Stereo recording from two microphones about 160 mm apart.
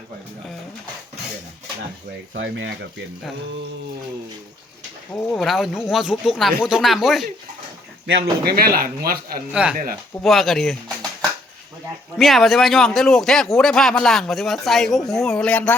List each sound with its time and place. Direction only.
5.1 s a man's voice: 5° left (ahead or behind)
8.0 s speech: 80° right; by 8.9 s 65° right (ahead or behind)
9.5 s a man's voice: 5° right (ahead or behind)
12.1 s a man's voice: centre (ahead or behind)